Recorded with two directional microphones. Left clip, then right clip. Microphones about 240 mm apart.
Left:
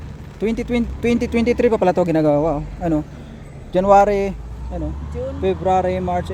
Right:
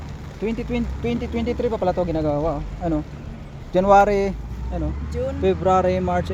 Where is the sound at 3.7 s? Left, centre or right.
Centre.